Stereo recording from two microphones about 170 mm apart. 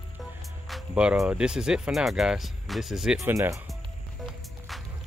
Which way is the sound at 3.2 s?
20° right (ahead or behind).